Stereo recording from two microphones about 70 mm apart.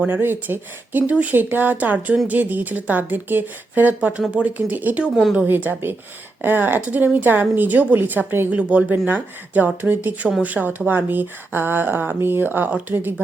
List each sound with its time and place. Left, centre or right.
0.1 s speech: right
5.1 s a woman's voice: centre
5.5 s speech: right